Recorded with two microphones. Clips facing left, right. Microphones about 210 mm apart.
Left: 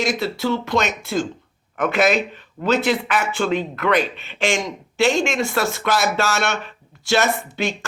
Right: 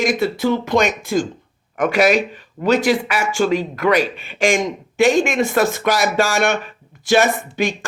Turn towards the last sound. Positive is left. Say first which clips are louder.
# right 3 dB
turn(degrees=-15)  # may be behind; listen again after turning